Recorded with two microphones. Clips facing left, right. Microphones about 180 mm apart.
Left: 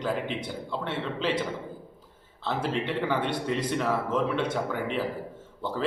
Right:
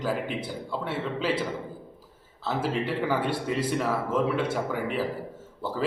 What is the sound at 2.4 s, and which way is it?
A man's voice, 5° right (ahead or behind).